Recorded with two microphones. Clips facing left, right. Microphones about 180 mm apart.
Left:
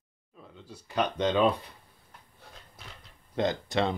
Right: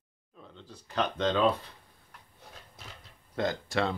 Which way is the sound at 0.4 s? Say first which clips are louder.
Left 1 dB; 5° left (ahead or behind).